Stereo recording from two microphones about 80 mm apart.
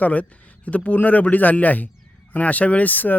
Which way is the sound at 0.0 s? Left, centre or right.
Centre.